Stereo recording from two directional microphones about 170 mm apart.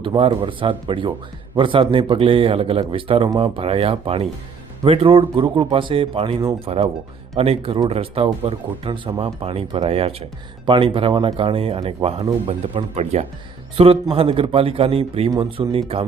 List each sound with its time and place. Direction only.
0.0 s speech: 25° right (ahead or behind)